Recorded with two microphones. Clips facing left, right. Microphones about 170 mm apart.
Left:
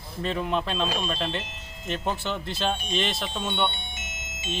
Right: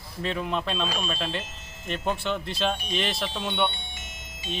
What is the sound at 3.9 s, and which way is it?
Music, 20° left (ahead or behind).